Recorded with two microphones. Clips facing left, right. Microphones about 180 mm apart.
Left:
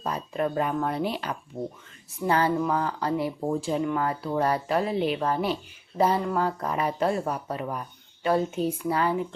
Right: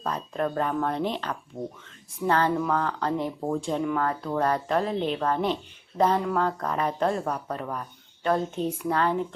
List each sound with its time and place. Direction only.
0.0 s speech: 10° left (ahead or behind)